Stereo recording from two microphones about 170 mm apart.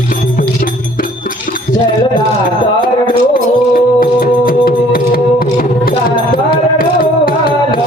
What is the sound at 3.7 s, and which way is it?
Music, 60° left (ahead or behind).